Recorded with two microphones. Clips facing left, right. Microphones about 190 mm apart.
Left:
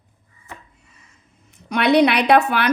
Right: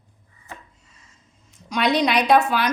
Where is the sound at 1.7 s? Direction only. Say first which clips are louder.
Left 5 dB; 60° left (ahead or behind).